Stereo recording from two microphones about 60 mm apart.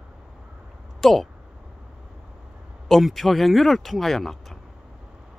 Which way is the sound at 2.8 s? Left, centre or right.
Centre.